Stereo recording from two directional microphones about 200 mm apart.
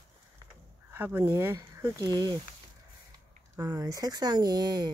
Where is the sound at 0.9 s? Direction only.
10° right (ahead or behind).